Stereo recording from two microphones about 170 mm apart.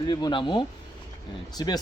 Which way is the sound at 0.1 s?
25° left (ahead or behind).